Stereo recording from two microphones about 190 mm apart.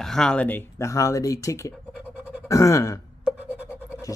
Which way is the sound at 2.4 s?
15° left (ahead or behind).